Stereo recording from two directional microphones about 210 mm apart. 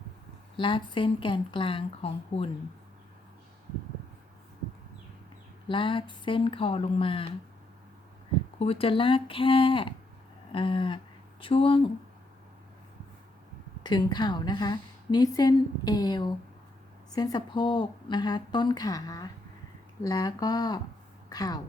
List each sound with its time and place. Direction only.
0.5 s a woman's voice: 25° left (ahead or behind)
5.6 s a woman's voice: 25° left (ahead or behind)
8.5 s a woman's voice: 30° left (ahead or behind)
13.8 s a woman's voice: 20° left (ahead or behind)